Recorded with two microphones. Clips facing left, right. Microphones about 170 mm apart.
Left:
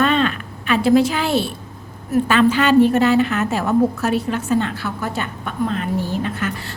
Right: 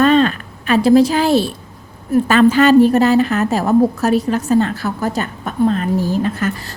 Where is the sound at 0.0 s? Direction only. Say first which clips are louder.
Right 5 dB; 40° right (ahead or behind).